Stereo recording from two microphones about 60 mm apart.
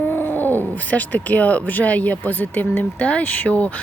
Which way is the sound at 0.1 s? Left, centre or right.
Left.